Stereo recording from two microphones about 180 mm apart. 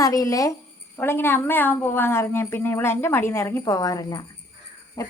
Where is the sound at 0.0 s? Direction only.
20° left (ahead or behind).